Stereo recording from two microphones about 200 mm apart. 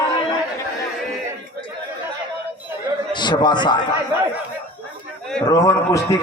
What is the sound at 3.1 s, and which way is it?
Speech, 20° left (ahead or behind).